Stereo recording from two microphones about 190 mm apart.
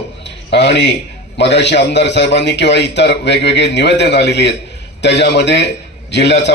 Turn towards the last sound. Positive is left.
turn(degrees=65)  # may be behind; listen again after turning